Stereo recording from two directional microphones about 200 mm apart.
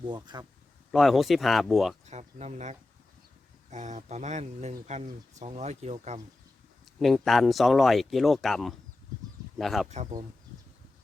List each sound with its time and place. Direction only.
0.0 s speech: 20° right (ahead or behind)
0.9 s speech: centre (ahead or behind)
2.0 s speech: 35° right (ahead or behind)
7.0 s speech: centre (ahead or behind)
9.9 s speech: 35° right (ahead or behind)